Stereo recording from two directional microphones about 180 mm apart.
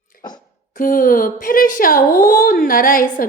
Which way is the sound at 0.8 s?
50° left (ahead or behind).